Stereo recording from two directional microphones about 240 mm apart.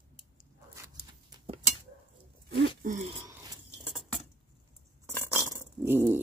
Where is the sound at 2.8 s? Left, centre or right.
Right.